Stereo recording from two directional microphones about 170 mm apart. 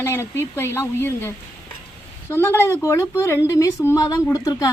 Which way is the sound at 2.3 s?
15° left (ahead or behind).